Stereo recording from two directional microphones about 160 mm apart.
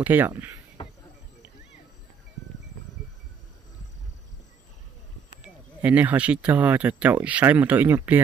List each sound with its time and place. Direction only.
0.0 s speech: 10° right (ahead or behind)
0.8 s cricket: 35° left (ahead or behind)
5.4 s speech: 10° right (ahead or behind)